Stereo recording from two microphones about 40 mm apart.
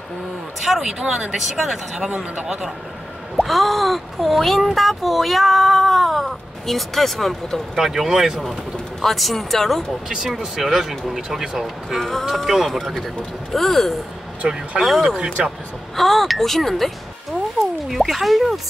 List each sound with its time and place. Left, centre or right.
0.6 s speech: centre
3.4 s speech: centre
7.7 s speech: centre
9.0 s speech: centre
10.0 s speech: centre
12.0 s speech: centre
14.4 s speech: right
14.8 s speech: centre
15.4 s speech: right
16.0 s speech: centre
17.8 s speech: centre